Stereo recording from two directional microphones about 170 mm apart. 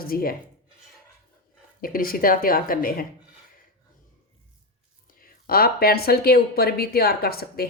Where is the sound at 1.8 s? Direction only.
55° left (ahead or behind).